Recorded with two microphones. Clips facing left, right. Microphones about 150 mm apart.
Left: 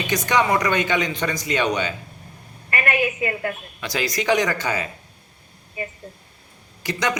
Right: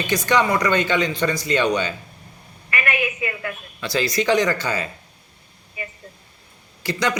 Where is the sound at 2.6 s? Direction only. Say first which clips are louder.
Left 2 dB; 35° left (ahead or behind).